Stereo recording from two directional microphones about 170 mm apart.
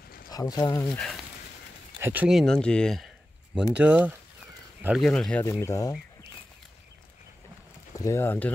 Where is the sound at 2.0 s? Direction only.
10° right (ahead or behind).